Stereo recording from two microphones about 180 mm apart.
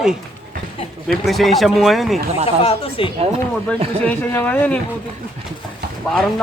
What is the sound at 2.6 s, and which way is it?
Speech, 30° left (ahead or behind).